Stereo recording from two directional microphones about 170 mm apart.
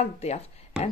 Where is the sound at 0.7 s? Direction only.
5° right (ahead or behind).